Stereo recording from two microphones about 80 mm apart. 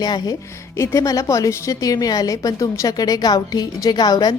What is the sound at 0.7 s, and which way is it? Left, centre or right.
A woman's voice, left.